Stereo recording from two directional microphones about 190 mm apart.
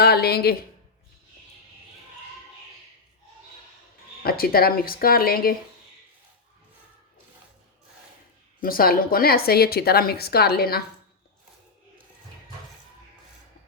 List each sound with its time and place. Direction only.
0.0 s a woman's voice: 55° left (ahead or behind)
4.2 s a woman's voice: 50° left (ahead or behind)
8.6 s a woman's voice: 50° left (ahead or behind)